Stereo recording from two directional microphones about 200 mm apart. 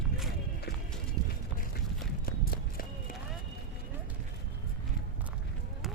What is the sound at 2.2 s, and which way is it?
Walk, 45° left (ahead or behind).